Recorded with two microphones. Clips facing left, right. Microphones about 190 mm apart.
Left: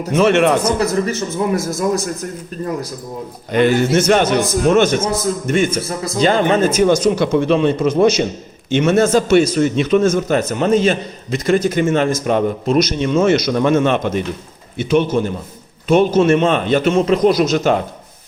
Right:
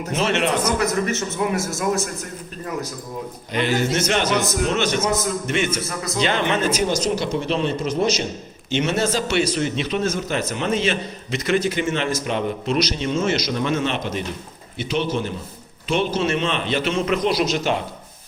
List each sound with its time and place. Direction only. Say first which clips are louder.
0.1 s a man's voice: left 9 dB; 55° left (ahead or behind)
0.6 s a man's voice: left 4 dB; 30° left (ahead or behind)
3.5 s a man's voice: left 8 dB; 50° left (ahead or behind)